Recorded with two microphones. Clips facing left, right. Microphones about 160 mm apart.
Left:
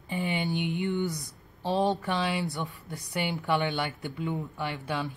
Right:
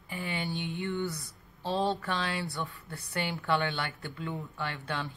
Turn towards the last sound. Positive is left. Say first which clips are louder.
# left 3 dB
turn(degrees=15)  # may be behind; listen again after turning